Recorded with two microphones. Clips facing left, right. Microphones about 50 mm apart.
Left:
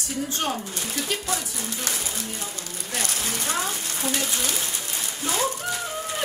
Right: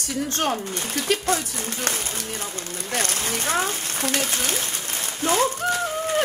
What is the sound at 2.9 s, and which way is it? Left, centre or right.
Speech, right.